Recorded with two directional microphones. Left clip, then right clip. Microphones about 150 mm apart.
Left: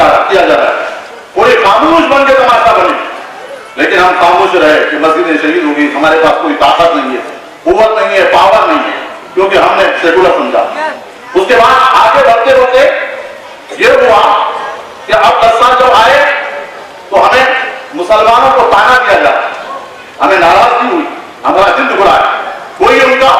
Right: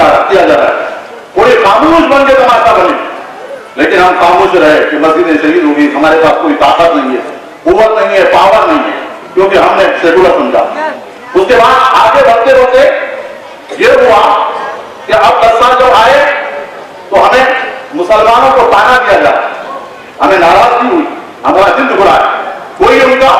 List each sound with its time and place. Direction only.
0.2 s a sound: 15° right (ahead or behind)
3.8 s a man's voice: 20° right (ahead or behind)
11.4 s a man's voice: 25° right (ahead or behind)
13.9 s a man's voice: 25° right (ahead or behind)
14.3 s a sound: 15° right (ahead or behind)
15.1 s speech: 25° right (ahead or behind)
17.3 s a sound: 15° right (ahead or behind)
18.3 s a man's voice: 30° right (ahead or behind)
21.4 s a man's voice: 30° right (ahead or behind)
21.8 s a man's voice: 15° right (ahead or behind)
22.0 s a sound: 20° right (ahead or behind)
22.8 s a man's voice: 20° right (ahead or behind)